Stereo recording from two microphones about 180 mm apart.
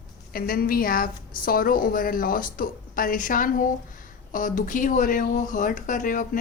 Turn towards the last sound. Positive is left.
turn(degrees=50)  # may be behind; listen again after turning